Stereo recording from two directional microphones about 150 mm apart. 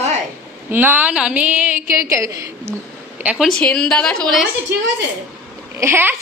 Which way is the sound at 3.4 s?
5° left (ahead or behind).